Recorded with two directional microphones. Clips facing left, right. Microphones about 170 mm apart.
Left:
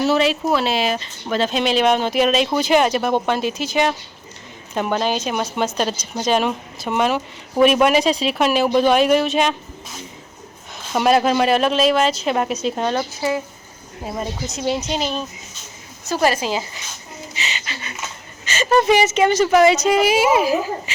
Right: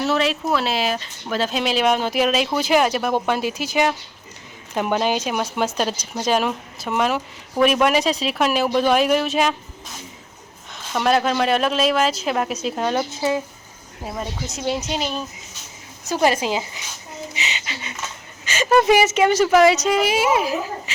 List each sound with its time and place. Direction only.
0.0 s a woman's voice: centre (ahead or behind)
10.9 s speech: 10° left (ahead or behind)
16.2 s a woman's voice: 20° right (ahead or behind); by 20.9 s centre (ahead or behind)